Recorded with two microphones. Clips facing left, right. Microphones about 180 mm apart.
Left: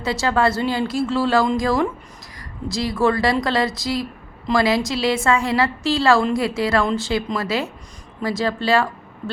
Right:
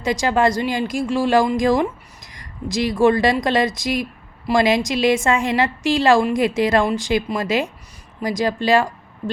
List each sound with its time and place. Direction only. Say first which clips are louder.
0.0 s a woman's voice: right 2 dB; 15° right (ahead or behind)